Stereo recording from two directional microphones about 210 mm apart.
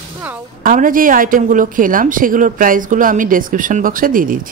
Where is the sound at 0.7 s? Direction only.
40° right (ahead or behind).